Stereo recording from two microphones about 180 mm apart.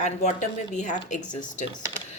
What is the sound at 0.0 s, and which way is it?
A woman's voice, 40° left (ahead or behind).